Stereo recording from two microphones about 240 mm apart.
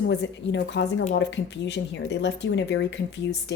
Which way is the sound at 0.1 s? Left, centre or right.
Left.